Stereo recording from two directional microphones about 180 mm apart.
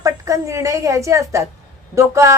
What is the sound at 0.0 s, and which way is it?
A woman's voice, 15° right (ahead or behind).